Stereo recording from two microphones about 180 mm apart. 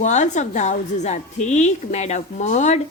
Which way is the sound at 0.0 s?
40° left (ahead or behind).